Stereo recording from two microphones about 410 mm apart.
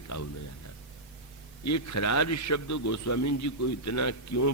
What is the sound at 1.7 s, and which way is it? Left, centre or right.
A man's voice, left.